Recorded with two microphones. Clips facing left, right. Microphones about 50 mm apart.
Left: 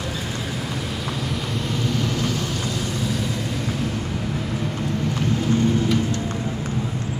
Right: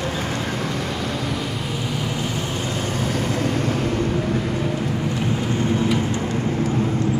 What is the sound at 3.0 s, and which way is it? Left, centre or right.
Vehicle, right.